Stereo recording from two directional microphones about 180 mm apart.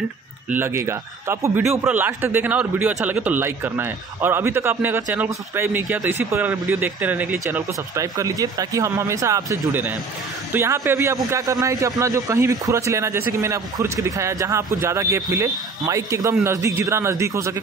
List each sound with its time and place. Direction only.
0.5 s a man's voice: 10° right (ahead or behind)